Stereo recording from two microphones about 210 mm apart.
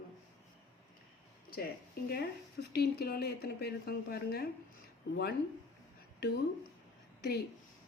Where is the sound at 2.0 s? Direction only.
45° left (ahead or behind).